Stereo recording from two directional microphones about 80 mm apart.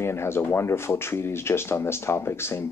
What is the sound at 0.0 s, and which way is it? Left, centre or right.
Speech, left.